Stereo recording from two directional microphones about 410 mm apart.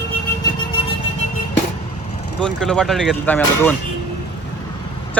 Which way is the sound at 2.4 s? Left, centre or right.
Centre.